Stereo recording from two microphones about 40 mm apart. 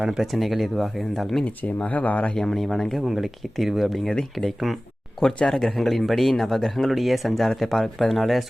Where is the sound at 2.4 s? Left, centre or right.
Centre.